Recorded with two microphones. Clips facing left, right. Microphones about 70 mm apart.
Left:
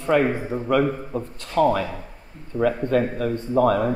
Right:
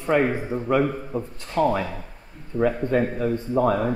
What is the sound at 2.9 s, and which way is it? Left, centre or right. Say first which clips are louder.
Speech: left 1 dB; centre.